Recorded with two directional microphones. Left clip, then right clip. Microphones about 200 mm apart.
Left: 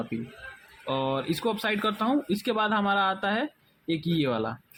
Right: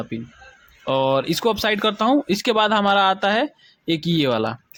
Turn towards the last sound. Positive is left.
turn(degrees=-35)  # may be behind; listen again after turning